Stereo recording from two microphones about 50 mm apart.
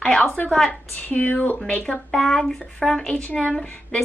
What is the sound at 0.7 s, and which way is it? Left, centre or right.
Speech, left.